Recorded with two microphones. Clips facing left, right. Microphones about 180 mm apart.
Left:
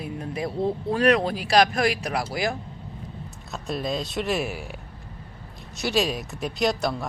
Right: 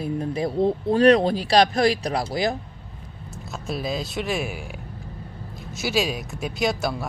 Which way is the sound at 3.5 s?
Centre (ahead or behind).